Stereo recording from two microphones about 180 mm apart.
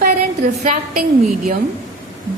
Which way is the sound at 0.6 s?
50° right (ahead or behind).